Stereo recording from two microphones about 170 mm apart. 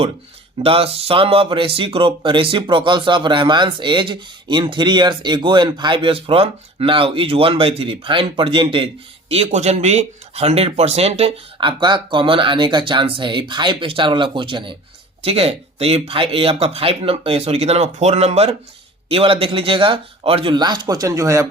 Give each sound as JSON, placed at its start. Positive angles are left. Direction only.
{"t": 0.6, "sound": "speech", "side_deg": -35}